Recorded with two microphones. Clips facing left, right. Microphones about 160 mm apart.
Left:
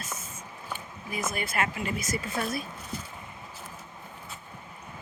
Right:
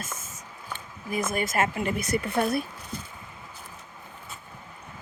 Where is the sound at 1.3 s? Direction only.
45° right (ahead or behind); by 2.6 s 60° right (ahead or behind).